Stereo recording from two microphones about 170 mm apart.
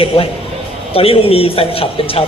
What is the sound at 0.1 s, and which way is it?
A man's voice, 30° left (ahead or behind).